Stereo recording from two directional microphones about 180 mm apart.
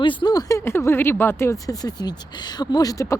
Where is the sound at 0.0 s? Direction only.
25° left (ahead or behind).